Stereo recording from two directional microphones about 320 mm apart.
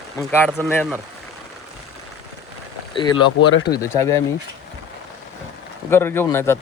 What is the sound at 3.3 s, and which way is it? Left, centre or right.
Speech, left.